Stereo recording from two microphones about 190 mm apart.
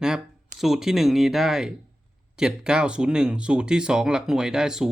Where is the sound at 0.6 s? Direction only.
Centre (ahead or behind).